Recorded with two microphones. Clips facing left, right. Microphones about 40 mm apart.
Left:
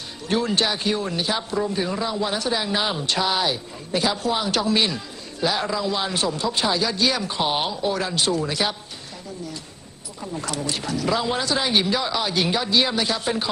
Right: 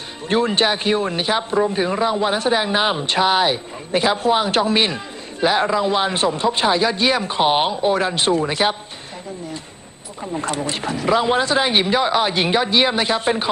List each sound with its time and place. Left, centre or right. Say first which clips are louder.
0.3 s a man's voice: right 4 dB; right
10.2 s a man's voice: right 5 dB; right